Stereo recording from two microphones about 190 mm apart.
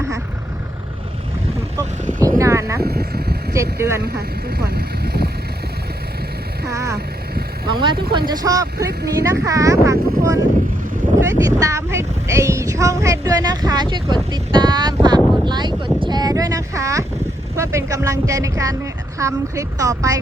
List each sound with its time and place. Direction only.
2.2 s boat: 15° right (ahead or behind)
2.8 s vehicle: 55° right (ahead or behind)
3.5 s speech: 15° right (ahead or behind)
4.0 s speech: 55° right (ahead or behind)
6.7 s speech: 15° right (ahead or behind)
15.4 s a sound: 25° right (ahead or behind)
17.6 s speech: 15° right (ahead or behind)